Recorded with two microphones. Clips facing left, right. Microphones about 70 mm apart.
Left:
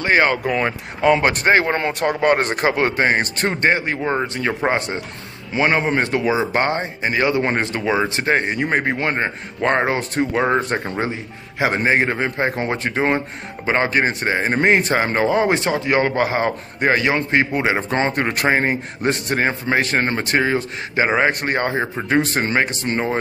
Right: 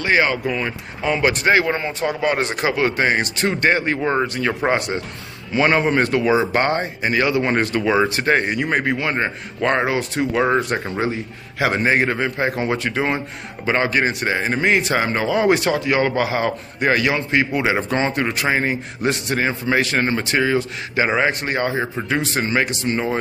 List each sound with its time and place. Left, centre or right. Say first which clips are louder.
0.0 s speech: left 1 dB; left
1.2 s a man's voice: even; left
1.8 s speech: left 3 dB; left
2.2 s a man's voice: left 3 dB; left
3.7 s speech: right 1 dB; centre
4.7 s a man's voice: right 1 dB; left
5.5 s a man's voice: right 1 dB; centre; by 10.2 s left
10.3 s speech: right 1 dB; centre
10.6 s a man's voice: even; left
11.6 s a man's voice: even; left
21.3 s a man's voice: left 1 dB; left